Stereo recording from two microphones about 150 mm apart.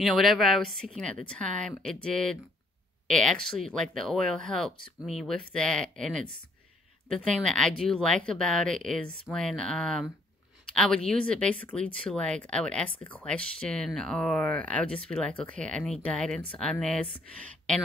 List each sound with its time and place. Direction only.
0.0 s speech: centre (ahead or behind)
3.4 s speech: centre (ahead or behind)